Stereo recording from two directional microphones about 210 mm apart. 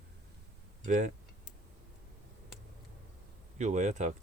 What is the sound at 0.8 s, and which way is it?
Speech, 35° right (ahead or behind).